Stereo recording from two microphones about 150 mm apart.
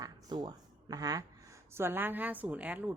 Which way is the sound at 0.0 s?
30° right (ahead or behind).